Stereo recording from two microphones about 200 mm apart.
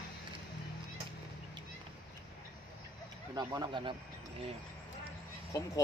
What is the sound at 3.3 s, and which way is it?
Speech, 20° right (ahead or behind).